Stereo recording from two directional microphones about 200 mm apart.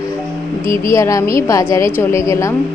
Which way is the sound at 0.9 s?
15° left (ahead or behind).